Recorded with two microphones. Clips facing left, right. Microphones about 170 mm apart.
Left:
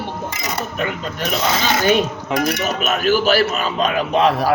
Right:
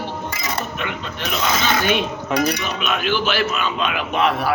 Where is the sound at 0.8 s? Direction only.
40° left (ahead or behind).